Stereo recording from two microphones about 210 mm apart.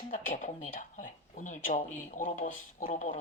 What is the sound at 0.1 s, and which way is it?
Speech, 40° left (ahead or behind).